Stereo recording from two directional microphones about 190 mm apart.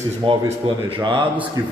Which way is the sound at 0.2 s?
25° right (ahead or behind).